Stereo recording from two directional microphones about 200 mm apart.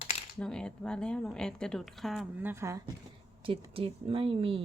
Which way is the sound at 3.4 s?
25° right (ahead or behind).